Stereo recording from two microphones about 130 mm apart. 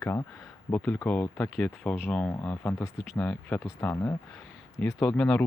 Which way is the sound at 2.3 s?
20° left (ahead or behind).